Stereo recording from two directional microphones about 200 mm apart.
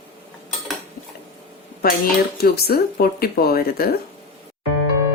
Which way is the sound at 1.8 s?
50° left (ahead or behind).